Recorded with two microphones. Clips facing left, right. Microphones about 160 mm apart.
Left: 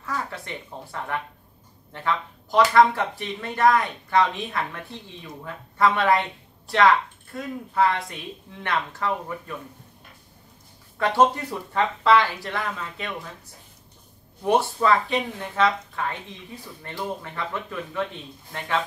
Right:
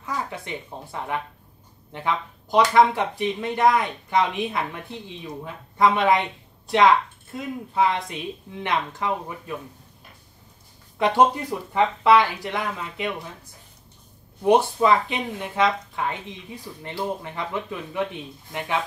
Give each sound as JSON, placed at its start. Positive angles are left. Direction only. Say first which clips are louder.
{"t": 0.0, "sound": "speech", "louder": "right 1 dB", "side_deg": -15}
{"t": 7.3, "sound": "speech", "louder": "even", "side_deg": -15}
{"t": 11.0, "sound": "speech", "louder": "right 1 dB", "side_deg": -15}
{"t": 14.4, "sound": "speech", "louder": "right 3 dB", "side_deg": -15}